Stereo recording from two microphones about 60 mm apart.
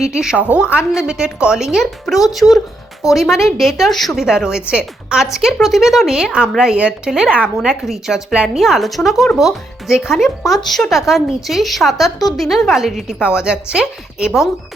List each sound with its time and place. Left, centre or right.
0.1 s a woman's voice: centre
0.3 s speech: right
0.8 s a woman's voice: centre
4.2 s a woman's voice: centre
7.1 s a woman's voice: centre